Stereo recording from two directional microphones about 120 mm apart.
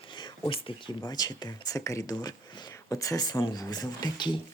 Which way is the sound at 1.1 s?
35° left (ahead or behind).